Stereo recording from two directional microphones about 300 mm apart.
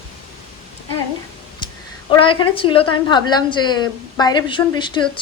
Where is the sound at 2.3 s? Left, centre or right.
Centre.